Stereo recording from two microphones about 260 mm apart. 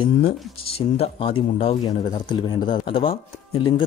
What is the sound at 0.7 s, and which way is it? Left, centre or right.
Speech, left.